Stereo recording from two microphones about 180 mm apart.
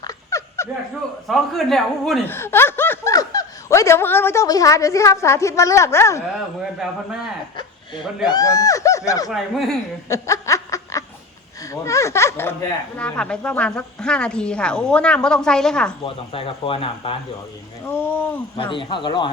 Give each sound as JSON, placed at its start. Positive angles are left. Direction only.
{"t": 0.0, "sound": "snicker", "side_deg": 15}
{"t": 1.3, "sound": "speech", "side_deg": 0}
{"t": 2.2, "sound": "speech", "side_deg": 15}
{"t": 6.7, "sound": "speech", "side_deg": -5}
{"t": 8.3, "sound": "speech", "side_deg": 20}
{"t": 9.3, "sound": "speech", "side_deg": 0}
{"t": 10.1, "sound": "snicker", "side_deg": 15}
{"t": 11.7, "sound": "speech", "side_deg": 15}
{"t": 16.0, "sound": "speech", "side_deg": 30}
{"t": 17.8, "sound": "speech", "side_deg": 10}
{"t": 18.5, "sound": "speech", "side_deg": 25}